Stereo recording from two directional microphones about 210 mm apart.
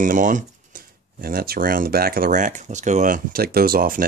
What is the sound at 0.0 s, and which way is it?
Speech, 40° right (ahead or behind).